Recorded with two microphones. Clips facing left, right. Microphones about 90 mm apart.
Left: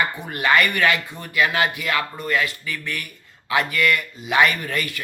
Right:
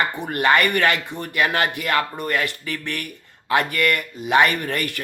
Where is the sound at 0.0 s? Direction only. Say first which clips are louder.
Right 2 dB; 55° right (ahead or behind).